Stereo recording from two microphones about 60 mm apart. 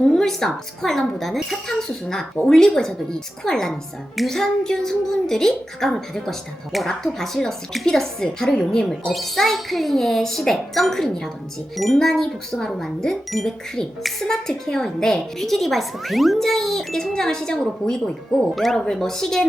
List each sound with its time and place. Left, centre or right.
0.1 s speech: centre